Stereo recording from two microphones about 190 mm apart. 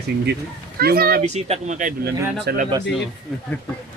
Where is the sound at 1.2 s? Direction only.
35° right (ahead or behind).